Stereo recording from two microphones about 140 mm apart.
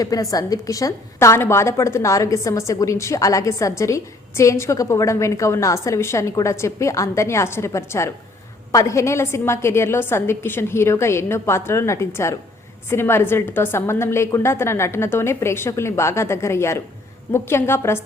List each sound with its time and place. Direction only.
0.0 s a woman's voice: 25° left (ahead or behind)